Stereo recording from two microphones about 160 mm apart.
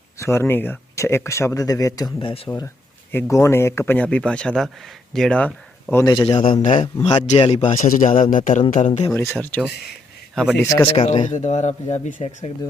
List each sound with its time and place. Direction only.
0.2 s speech: 15° left (ahead or behind)
2.2 s speech: 35° left (ahead or behind)
3.1 s speech: 15° left (ahead or behind)
5.9 s a man's voice: 20° left (ahead or behind)
6.1 s speech: 30° left (ahead or behind)
7.3 s speech: 40° left (ahead or behind)
7.8 s speech: 60° left (ahead or behind)
8.9 s a man's voice: 30° left (ahead or behind)
9.1 s speech: 15° left (ahead or behind)
10.3 s a man's voice: centre (ahead or behind)
10.6 s speech: 15° left (ahead or behind)
10.8 s speech: 45° left (ahead or behind)